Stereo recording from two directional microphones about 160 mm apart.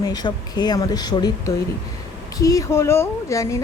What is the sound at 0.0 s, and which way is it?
A woman's voice, 25° left (ahead or behind).